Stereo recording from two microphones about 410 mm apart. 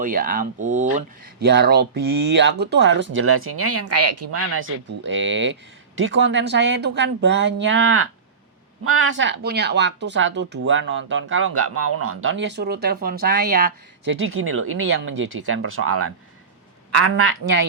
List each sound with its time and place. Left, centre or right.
0.0 s a woman's voice: right